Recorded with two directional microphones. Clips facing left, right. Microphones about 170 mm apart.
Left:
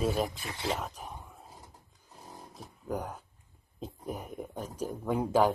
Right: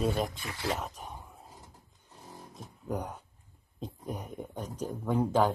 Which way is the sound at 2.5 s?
Centre (ahead or behind).